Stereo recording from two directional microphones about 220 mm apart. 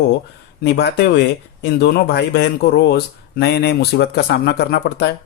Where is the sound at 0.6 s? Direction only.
50° left (ahead or behind).